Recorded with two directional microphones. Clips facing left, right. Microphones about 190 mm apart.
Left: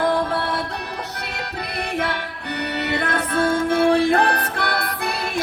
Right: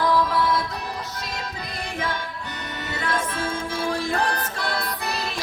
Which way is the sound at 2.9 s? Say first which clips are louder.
Left 3 dB; 65° left (ahead or behind).